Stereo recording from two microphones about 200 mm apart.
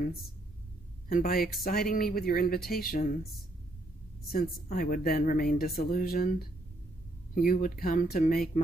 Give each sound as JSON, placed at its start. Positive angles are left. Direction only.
{"t": 1.0, "sound": "speech", "side_deg": 45}
{"t": 4.6, "sound": "speech", "side_deg": 45}